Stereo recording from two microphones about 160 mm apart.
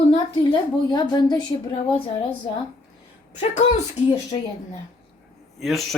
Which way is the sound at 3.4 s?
45° left (ahead or behind).